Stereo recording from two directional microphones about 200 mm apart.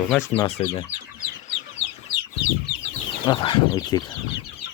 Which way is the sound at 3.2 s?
25° left (ahead or behind).